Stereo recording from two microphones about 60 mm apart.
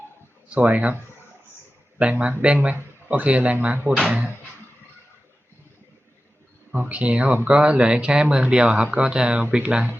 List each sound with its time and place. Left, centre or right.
0.5 s speech: right
2.0 s speech: centre
6.7 s speech: right